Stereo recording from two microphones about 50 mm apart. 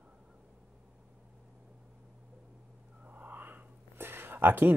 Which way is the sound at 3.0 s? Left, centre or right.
Right.